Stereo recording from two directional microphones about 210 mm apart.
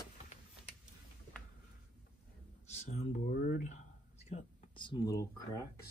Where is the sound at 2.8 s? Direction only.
30° left (ahead or behind).